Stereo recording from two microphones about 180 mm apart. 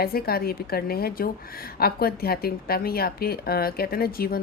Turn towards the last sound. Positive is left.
turn(degrees=55)  # may be behind; listen again after turning